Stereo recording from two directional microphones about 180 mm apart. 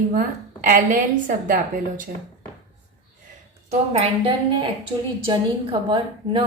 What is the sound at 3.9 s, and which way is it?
A woman's voice, 30° right (ahead or behind).